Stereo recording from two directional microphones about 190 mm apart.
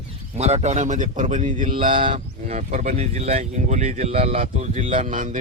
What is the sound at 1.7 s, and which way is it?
Speech, 25° right (ahead or behind).